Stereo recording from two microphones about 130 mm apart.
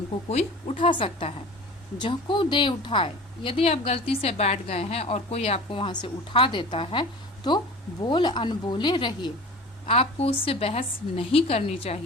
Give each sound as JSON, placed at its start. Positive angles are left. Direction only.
{"t": 0.3, "sound": "a woman's voice", "side_deg": 55}
{"t": 9.8, "sound": "a woman's voice", "side_deg": 50}